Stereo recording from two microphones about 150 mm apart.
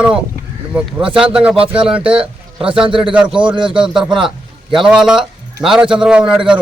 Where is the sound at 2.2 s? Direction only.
35° right (ahead or behind).